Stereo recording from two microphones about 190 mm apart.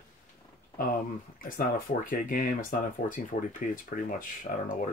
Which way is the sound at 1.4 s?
45° left (ahead or behind).